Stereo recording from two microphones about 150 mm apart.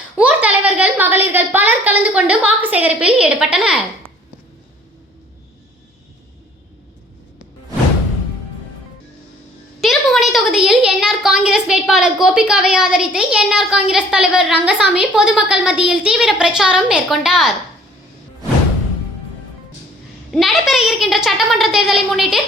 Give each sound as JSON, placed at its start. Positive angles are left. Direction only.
{"t": 0.2, "sound": "a sound", "side_deg": -10}
{"t": 9.8, "sound": "a woman's voice", "side_deg": 0}
{"t": 20.3, "sound": "a woman's voice", "side_deg": 0}